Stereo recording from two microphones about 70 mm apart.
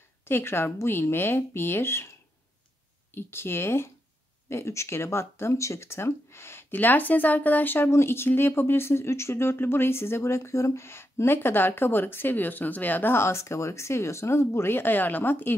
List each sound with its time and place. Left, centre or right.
0.2 s speech: left
3.2 s speech: left